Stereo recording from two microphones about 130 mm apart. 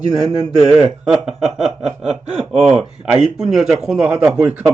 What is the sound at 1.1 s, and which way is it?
Speech, 5° right (ahead or behind).